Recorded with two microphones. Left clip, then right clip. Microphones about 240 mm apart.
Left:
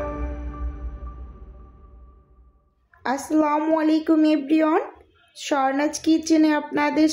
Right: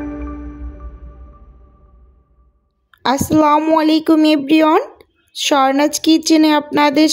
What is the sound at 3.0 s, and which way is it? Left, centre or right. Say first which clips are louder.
Speech: right 8 dB; right.